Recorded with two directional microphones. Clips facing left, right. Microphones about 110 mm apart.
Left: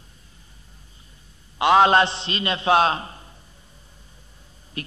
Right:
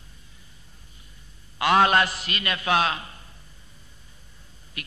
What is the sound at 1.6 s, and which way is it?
A man's voice, 25° left (ahead or behind).